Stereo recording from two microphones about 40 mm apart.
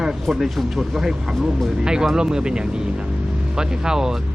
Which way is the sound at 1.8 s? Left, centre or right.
Centre.